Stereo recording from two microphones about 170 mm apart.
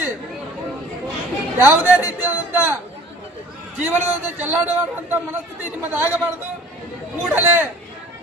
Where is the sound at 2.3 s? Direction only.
10° right (ahead or behind).